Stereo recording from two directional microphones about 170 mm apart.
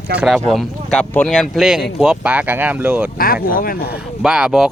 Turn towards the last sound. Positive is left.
turn(degrees=-5)  # may be behind; listen again after turning